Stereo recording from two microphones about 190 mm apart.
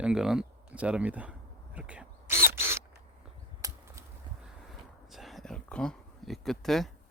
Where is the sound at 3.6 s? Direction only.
15° right (ahead or behind).